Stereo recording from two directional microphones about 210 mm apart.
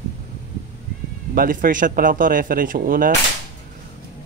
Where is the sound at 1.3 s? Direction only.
40° right (ahead or behind).